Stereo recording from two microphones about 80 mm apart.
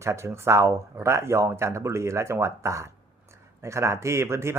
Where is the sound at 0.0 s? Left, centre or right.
Right.